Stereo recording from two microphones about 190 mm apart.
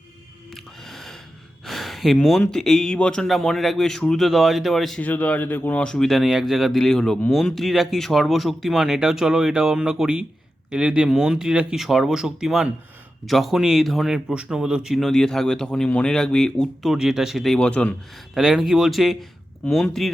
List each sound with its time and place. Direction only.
0.5 s music: centre (ahead or behind)
1.6 s speech: centre (ahead or behind)